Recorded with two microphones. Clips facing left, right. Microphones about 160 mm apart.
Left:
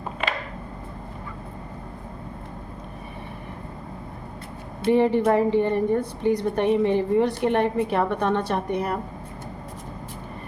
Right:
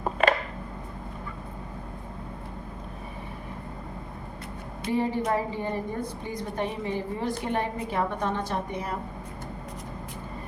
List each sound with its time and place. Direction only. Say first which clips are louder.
4.9 s a woman's voice: left 8 dB; 65° left (ahead or behind)